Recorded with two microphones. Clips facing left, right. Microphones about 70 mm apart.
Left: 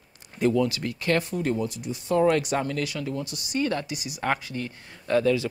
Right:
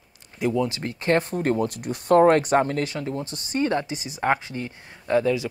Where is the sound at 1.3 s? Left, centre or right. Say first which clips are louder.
Right 3 dB; right; by 5.5 s centre.